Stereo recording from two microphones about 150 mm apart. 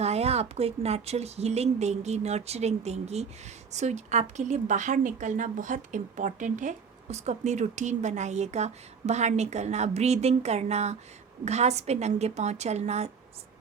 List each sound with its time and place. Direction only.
0.0 s a woman's voice: 45° right (ahead or behind)